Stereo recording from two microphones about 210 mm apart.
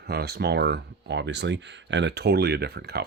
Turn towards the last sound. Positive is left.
turn(degrees=-50)  # may be behind; listen again after turning